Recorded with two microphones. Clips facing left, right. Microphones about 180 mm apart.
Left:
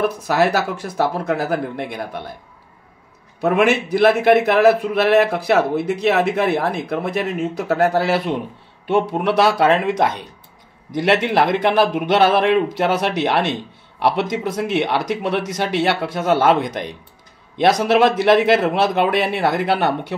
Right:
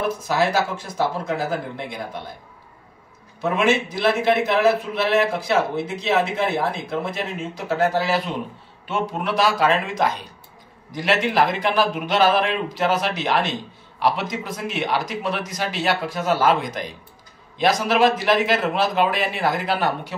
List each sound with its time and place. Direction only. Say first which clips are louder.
0.3 s speech: left 3 dB; 65° left (ahead or behind)
3.3 s speech: left 4 dB; 60° left (ahead or behind)
11.2 s speech: left 3 dB; 60° left (ahead or behind)